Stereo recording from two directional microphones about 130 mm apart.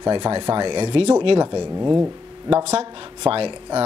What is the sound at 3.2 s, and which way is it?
Speech, 45° right (ahead or behind).